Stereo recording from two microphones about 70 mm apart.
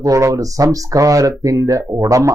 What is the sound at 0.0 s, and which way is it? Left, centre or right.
Speech, right.